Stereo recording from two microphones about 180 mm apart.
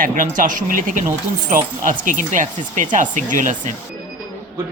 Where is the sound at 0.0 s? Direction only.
50° right (ahead or behind).